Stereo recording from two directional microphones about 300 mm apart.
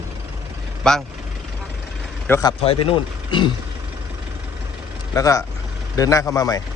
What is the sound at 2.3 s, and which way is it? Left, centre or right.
Speech, centre.